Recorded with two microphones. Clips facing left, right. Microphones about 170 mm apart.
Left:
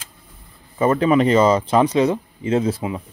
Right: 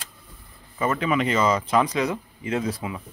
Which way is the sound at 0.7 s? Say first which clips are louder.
Left 7 dB; 35° left (ahead or behind).